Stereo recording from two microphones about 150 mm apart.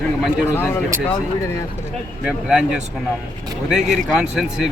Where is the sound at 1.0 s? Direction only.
15° left (ahead or behind).